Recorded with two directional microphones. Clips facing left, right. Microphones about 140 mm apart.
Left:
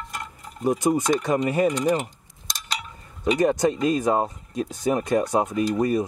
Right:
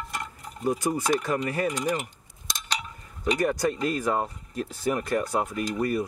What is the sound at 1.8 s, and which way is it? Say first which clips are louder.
Speech: left 6 dB; 35° left (ahead or behind).